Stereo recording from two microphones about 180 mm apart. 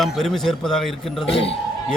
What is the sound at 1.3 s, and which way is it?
Speech, 35° left (ahead or behind).